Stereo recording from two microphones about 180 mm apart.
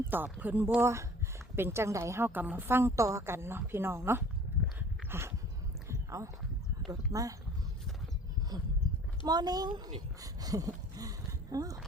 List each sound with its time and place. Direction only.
0.1 s a woman's voice: 10° right (ahead or behind)
5.0 s dog: 15° right (ahead or behind)
5.9 s a sound: 15° right (ahead or behind)
7.1 s a woman's voice: 20° right (ahead or behind)
8.5 s a woman's voice: 20° right (ahead or behind)
10.2 s a sound: 20° right (ahead or behind)